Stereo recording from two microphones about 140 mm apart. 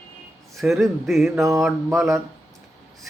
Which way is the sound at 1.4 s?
20° right (ahead or behind).